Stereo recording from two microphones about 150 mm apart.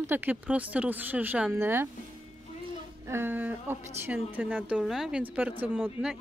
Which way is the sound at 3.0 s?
15° right (ahead or behind).